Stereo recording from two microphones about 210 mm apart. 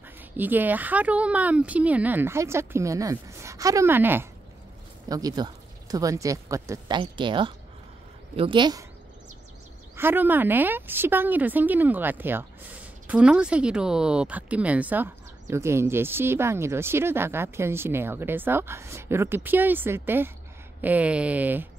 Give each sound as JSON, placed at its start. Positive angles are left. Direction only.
{"t": 0.4, "sound": "speech", "side_deg": -10}
{"t": 9.9, "sound": "speech", "side_deg": -10}